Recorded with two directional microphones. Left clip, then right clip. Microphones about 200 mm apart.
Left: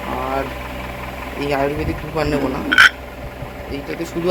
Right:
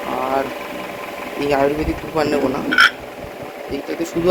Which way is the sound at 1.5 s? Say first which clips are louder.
Right 3 dB; 5° right (ahead or behind).